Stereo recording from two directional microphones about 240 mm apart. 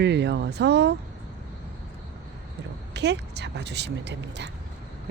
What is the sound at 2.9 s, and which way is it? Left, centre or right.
A woman's voice, right.